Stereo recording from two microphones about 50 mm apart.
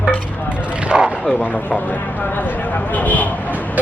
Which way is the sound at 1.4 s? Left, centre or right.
Left.